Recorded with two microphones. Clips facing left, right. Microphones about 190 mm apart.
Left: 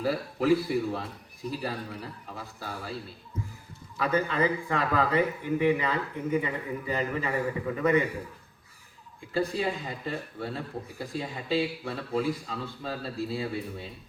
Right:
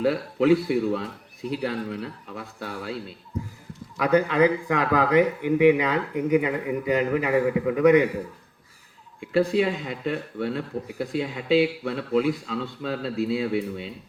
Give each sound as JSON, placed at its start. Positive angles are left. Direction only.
{"t": 0.0, "sound": "speech", "side_deg": -70}
{"t": 3.9, "sound": "speech", "side_deg": -75}
{"t": 9.2, "sound": "speech", "side_deg": -75}